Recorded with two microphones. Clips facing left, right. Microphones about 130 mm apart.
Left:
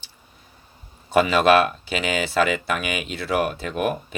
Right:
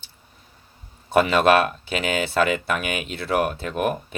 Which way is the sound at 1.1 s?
55° right (ahead or behind).